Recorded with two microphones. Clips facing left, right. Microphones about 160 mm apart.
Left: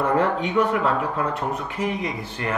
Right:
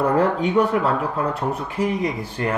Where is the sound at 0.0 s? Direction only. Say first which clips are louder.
Right 2 dB; 35° right (ahead or behind).